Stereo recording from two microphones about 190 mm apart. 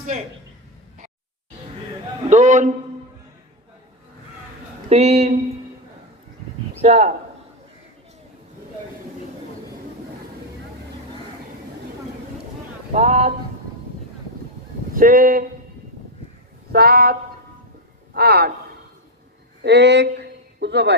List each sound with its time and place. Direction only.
2.3 s speech: 40° right (ahead or behind)
4.9 s speech: 35° right (ahead or behind)
6.8 s speech: 35° right (ahead or behind)
12.9 s speech: 35° right (ahead or behind)
14.9 s speech: 45° right (ahead or behind)
16.7 s speech: 50° right (ahead or behind)
19.6 s speech: 65° right (ahead or behind)